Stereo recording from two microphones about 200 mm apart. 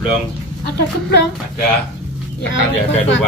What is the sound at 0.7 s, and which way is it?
Speech, 60° left (ahead or behind).